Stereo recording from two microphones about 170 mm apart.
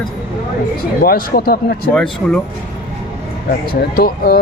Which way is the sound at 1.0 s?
60° left (ahead or behind).